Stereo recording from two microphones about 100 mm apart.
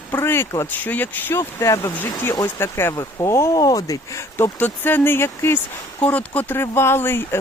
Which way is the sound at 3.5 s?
35° left (ahead or behind).